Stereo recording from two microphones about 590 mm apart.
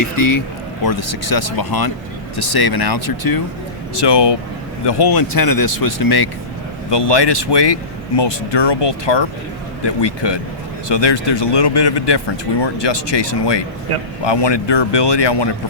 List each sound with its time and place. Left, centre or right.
0.9 s speech: left